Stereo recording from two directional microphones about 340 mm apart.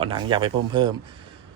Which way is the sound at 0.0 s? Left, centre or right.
Centre.